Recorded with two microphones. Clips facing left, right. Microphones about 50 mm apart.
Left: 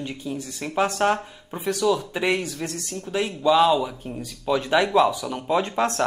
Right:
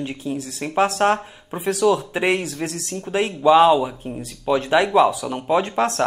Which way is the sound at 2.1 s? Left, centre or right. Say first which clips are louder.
Right 3 dB; centre.